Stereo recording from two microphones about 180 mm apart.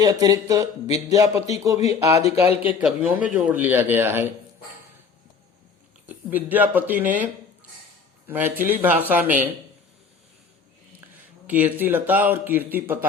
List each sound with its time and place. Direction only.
0.0 s speech: 20° right (ahead or behind)
6.1 s speech: 10° right (ahead or behind)
8.3 s speech: 10° right (ahead or behind)
11.4 s speech: 10° right (ahead or behind)